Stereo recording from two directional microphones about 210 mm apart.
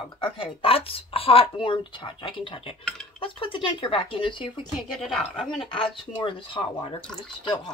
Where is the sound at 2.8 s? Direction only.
5° left (ahead or behind).